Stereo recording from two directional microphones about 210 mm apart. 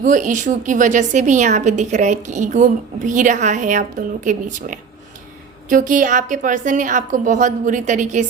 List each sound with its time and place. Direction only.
0.0 s a woman's voice: 35° right (ahead or behind)